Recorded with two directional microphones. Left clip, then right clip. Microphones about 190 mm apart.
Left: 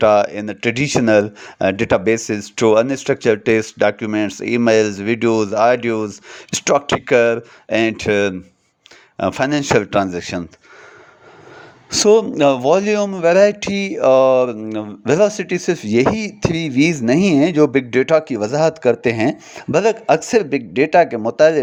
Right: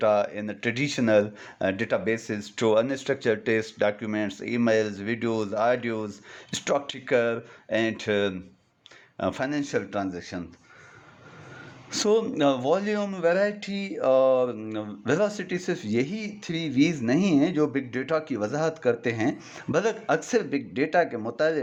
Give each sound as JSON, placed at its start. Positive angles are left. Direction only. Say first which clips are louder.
{"t": 0.0, "sound": "speech", "louder": "left 10 dB", "side_deg": 35}
{"t": 11.9, "sound": "speech", "louder": "left 11 dB", "side_deg": 30}